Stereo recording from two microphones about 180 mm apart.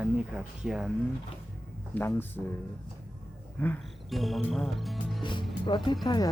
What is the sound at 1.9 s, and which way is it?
Speech, 10° left (ahead or behind).